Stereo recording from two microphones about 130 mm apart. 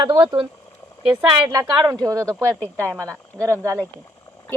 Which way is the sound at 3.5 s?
15° left (ahead or behind).